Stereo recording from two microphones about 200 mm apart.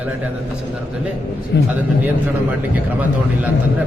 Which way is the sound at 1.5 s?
60° left (ahead or behind).